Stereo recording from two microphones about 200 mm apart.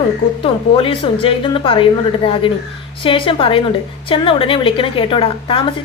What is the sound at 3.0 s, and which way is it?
A woman's voice, 25° left (ahead or behind).